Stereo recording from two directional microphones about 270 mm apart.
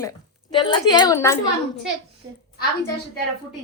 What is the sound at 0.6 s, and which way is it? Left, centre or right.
Speech, centre.